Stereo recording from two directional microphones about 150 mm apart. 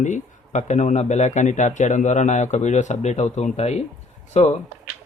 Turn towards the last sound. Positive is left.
turn(degrees=45)  # may be behind; listen again after turning